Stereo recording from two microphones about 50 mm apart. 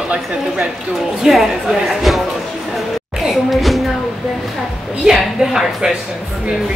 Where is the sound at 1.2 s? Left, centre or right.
Centre.